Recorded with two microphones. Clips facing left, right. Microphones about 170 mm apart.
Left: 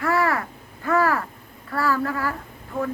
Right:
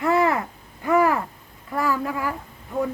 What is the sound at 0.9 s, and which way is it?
Owl, 15° right (ahead or behind).